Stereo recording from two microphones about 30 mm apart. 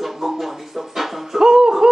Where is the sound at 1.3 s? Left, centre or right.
Centre.